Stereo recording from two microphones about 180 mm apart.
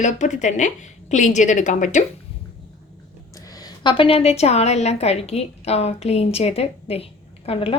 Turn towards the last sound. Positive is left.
turn(degrees=30)  # may be behind; listen again after turning